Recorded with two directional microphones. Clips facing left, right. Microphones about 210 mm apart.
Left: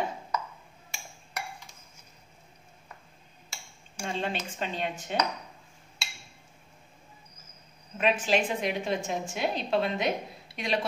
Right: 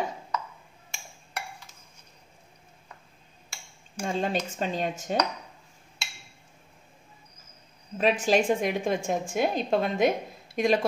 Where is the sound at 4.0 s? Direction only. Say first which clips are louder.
Right 4 dB; 45° right (ahead or behind).